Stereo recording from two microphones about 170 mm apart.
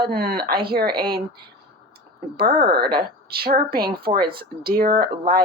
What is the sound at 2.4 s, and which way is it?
Speech, 65° right (ahead or behind).